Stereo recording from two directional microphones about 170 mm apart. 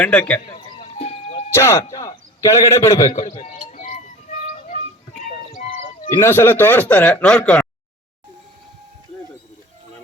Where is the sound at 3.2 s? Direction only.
35° left (ahead or behind).